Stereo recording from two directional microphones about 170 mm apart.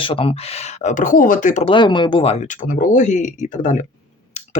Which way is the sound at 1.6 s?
30° left (ahead or behind).